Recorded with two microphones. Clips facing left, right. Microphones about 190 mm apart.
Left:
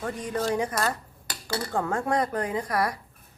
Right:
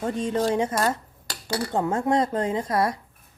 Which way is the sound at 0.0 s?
25° right (ahead or behind).